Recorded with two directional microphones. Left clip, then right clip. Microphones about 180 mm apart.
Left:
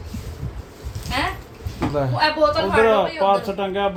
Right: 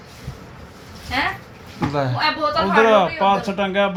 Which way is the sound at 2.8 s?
20° right (ahead or behind).